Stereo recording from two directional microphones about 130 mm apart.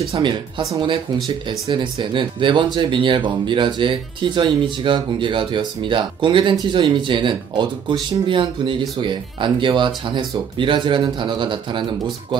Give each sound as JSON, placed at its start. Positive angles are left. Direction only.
{"t": 0.1, "sound": "speech", "side_deg": -35}